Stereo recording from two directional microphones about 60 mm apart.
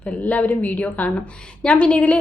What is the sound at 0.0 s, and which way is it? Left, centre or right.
A woman's voice, left.